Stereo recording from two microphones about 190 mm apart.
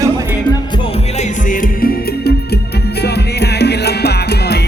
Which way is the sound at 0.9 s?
40° left (ahead or behind).